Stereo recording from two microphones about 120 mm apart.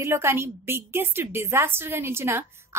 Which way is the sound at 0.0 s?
20° right (ahead or behind).